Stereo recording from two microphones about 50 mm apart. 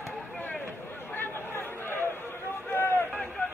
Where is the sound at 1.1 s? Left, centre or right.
Left.